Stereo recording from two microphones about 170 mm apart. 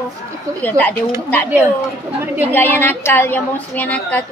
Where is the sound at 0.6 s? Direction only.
10° left (ahead or behind).